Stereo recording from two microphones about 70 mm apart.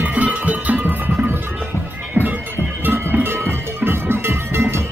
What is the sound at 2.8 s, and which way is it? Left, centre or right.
Music, right.